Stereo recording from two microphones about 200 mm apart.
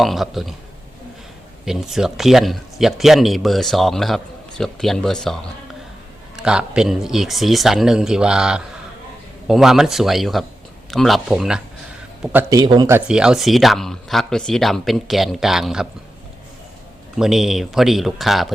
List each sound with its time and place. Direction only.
0.0 s speech: centre (ahead or behind)
1.6 s speech: centre (ahead or behind); by 12.9 s 20° right (ahead or behind)
12.9 s speech: 5° right (ahead or behind)
17.2 s speech: centre (ahead or behind)